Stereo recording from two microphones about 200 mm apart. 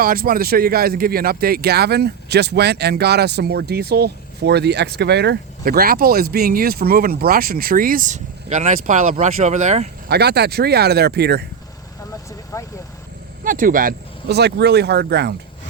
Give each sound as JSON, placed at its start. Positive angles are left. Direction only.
{"t": 0.0, "sound": "speech", "side_deg": -45}
{"t": 10.1, "sound": "speech", "side_deg": -55}
{"t": 12.5, "sound": "vehicle", "side_deg": 15}
{"t": 13.4, "sound": "speech", "side_deg": -45}